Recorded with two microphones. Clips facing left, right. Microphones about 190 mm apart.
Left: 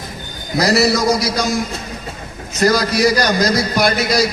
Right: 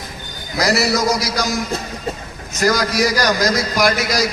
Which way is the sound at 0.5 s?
30° left (ahead or behind).